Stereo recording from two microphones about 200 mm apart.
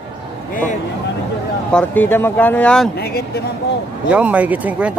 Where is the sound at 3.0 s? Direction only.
50° left (ahead or behind).